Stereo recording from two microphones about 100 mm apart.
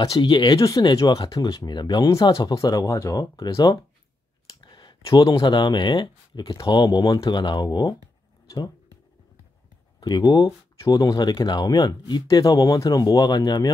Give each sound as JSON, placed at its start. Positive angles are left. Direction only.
{"t": 0.2, "sound": "speech", "side_deg": 50}
{"t": 0.6, "sound": "speech", "side_deg": 35}
{"t": 2.5, "sound": "speech", "side_deg": 35}
{"t": 4.6, "sound": "a sound", "side_deg": 50}
{"t": 5.1, "sound": "speech", "side_deg": 50}
{"t": 9.9, "sound": "speech", "side_deg": 45}